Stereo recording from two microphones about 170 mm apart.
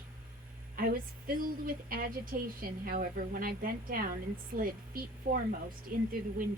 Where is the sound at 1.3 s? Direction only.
55° right (ahead or behind).